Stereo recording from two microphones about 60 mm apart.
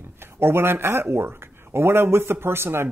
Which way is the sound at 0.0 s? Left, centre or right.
Right.